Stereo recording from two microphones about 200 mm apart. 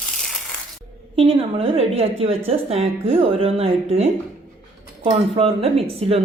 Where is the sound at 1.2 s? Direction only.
30° right (ahead or behind).